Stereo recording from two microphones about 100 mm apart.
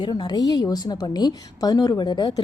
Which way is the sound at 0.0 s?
45° left (ahead or behind).